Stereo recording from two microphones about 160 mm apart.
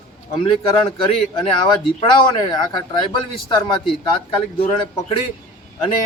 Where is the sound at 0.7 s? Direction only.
30° left (ahead or behind).